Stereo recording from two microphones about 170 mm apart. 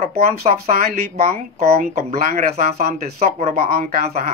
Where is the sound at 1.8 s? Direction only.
50° right (ahead or behind).